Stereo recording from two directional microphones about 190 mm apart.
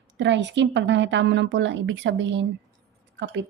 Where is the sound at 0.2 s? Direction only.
70° right (ahead or behind).